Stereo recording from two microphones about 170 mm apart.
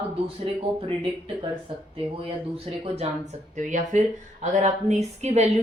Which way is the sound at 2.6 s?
35° right (ahead or behind).